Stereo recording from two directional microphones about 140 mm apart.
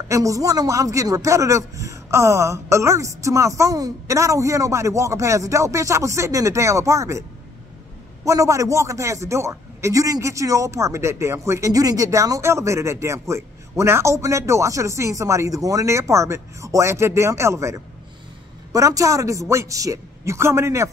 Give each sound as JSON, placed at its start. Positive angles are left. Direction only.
{"t": 0.1, "sound": "a man's voice", "side_deg": -25}
{"t": 8.3, "sound": "a man's voice", "side_deg": -20}